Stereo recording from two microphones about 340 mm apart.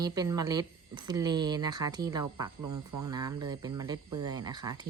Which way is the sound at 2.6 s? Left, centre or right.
Right.